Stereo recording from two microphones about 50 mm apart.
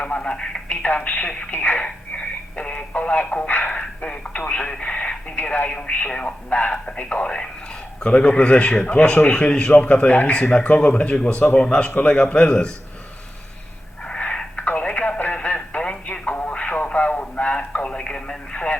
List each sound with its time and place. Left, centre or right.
0.0 s speech: left
0.7 s speech: left
1.5 s speech: left
1.8 s radio: left
3.5 s speech: left
3.8 s speech: left
5.4 s speech: left
5.6 s speech: left
14.0 s a sound: left
14.8 s radio: left
15.8 s telephone: centre
16.2 s radio: left